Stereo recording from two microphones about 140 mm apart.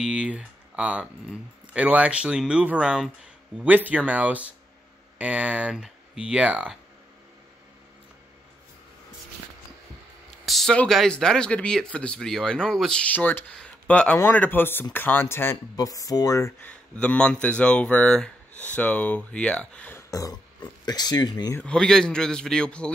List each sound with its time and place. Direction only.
0.0 s speech: 5° right (ahead or behind)
10.4 s speech: centre (ahead or behind); by 16.5 s 25° left (ahead or behind)
16.6 s speech: 10° left (ahead or behind); by 21.5 s 30° left (ahead or behind)
21.5 s a man's voice: 5° left (ahead or behind)